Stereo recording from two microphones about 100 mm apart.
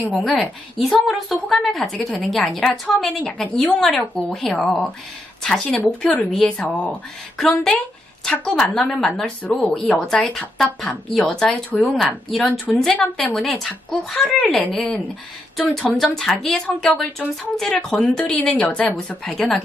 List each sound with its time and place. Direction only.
0.2 s a woman's voice: 5° left (ahead or behind)
12.4 s speech: 20° left (ahead or behind)
13.1 s a woman's voice: 5° left (ahead or behind)